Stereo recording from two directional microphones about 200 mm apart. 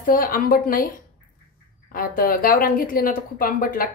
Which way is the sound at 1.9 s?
45° left (ahead or behind).